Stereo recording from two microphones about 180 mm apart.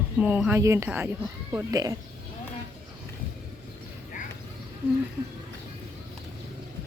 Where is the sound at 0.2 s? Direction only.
10° right (ahead or behind).